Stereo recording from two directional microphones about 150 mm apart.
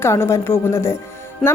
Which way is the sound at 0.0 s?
15° left (ahead or behind).